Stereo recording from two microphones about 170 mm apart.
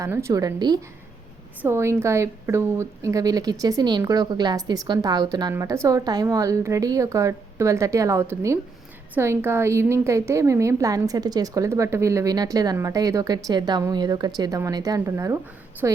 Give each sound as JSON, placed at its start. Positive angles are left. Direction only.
{"t": 0.0, "sound": "a woman's voice", "side_deg": -15}